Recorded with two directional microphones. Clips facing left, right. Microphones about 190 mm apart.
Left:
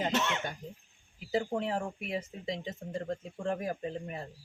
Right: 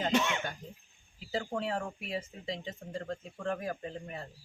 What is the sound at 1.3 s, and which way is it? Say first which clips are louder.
Speech: left 3 dB; 20° left (ahead or behind).